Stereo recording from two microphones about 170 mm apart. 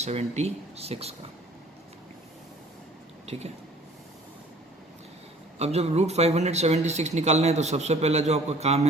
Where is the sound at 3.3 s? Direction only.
40° right (ahead or behind).